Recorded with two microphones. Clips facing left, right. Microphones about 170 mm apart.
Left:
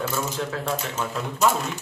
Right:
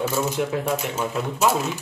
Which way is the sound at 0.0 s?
15° right (ahead or behind).